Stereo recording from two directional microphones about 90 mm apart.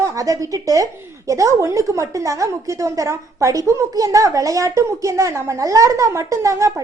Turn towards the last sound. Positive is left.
turn(degrees=-35)  # may be behind; listen again after turning